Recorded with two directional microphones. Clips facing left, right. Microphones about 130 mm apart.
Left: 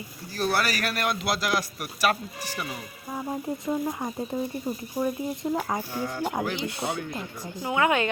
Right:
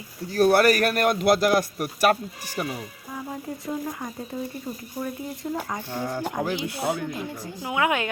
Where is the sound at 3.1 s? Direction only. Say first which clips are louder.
Left 3 dB; 20° left (ahead or behind).